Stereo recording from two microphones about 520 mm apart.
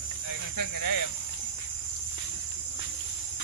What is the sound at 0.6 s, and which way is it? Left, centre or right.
Speech, left.